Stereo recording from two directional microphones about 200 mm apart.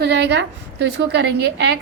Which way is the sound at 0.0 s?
60° right (ahead or behind).